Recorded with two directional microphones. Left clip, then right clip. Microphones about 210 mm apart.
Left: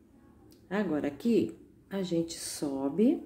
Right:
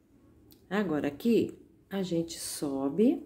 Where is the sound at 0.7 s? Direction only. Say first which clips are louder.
Right 1 dB; 15° right (ahead or behind).